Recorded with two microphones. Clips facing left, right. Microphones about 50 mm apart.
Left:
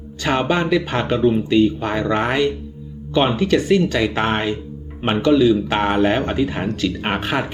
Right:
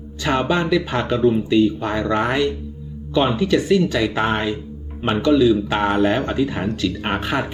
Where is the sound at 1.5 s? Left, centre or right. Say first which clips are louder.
Left 1 dB; left.